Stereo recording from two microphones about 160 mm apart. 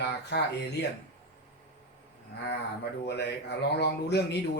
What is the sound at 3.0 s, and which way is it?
Speech, 90° left.